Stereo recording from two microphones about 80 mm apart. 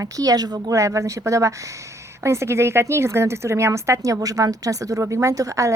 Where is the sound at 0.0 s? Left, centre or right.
Right.